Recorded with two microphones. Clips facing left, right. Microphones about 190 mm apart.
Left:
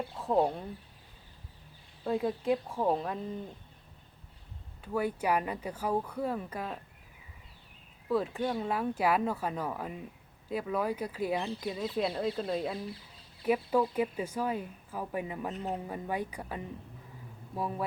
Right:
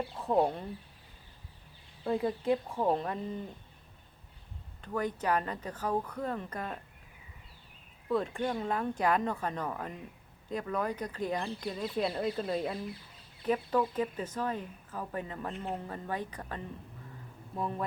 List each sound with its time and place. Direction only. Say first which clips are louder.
0.2 s speech: even; centre (ahead or behind)
2.0 s speech: even; centre (ahead or behind)
4.8 s a woman's voice: left 2 dB; 10° left (ahead or behind)
8.1 s a woman's voice: left 1 dB; 5° left (ahead or behind)